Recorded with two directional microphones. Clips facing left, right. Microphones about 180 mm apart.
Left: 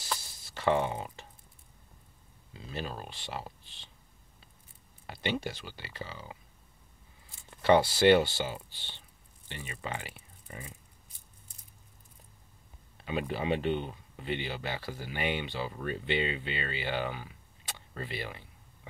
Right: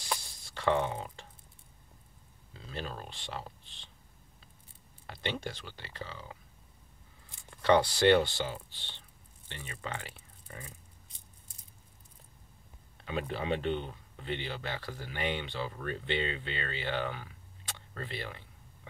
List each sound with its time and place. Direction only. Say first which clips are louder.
0.2 s a sound: left 1 dB; 5° left (ahead or behind)
2.5 s speech: left 2 dB; 10° left (ahead or behind)
5.0 s speech: left 3 dB; 5° left (ahead or behind)
7.6 s speech: left 2 dB; 5° left (ahead or behind)
13.0 s speech: left 2 dB; 10° left (ahead or behind)